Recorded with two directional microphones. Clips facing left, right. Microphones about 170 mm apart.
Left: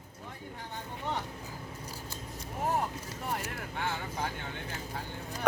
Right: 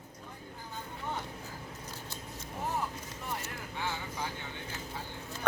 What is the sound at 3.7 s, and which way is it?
Vehicle, 55° left (ahead or behind).